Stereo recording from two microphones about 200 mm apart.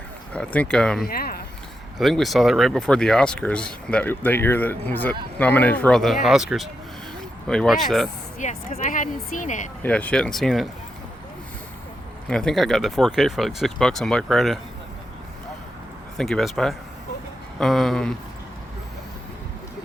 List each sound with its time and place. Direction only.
0.3 s speech: 5° left (ahead or behind)
1.0 s speech: 50° left (ahead or behind)
2.0 s speech: centre (ahead or behind)
8.4 s speech: 40° left (ahead or behind)
9.8 s speech: 5° left (ahead or behind)
12.3 s speech: centre (ahead or behind)
16.1 s speech: centre (ahead or behind)